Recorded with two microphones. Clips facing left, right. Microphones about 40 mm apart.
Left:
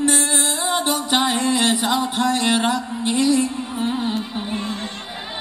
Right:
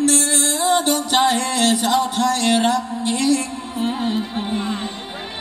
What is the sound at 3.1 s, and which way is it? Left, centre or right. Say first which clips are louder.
Speech: left 2 dB; right.